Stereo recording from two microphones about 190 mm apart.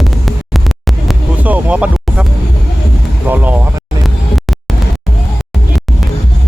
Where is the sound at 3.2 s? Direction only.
10° right (ahead or behind).